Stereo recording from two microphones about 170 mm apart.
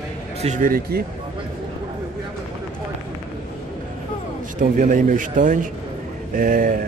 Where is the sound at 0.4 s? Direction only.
45° right (ahead or behind).